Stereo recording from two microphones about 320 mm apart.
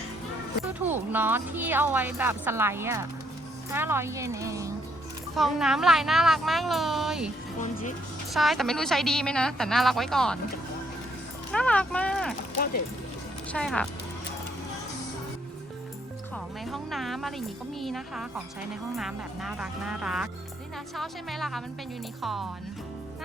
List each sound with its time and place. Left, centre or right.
0.7 s speech: centre
7.6 s speech: left
8.3 s speech: centre
11.5 s speech: centre
13.5 s speech: centre
16.3 s speech: centre